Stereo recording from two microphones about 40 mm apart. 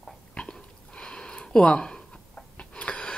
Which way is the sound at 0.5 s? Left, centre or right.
Left.